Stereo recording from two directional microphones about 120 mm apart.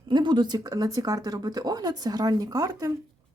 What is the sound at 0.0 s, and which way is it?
Speech, 40° right (ahead or behind).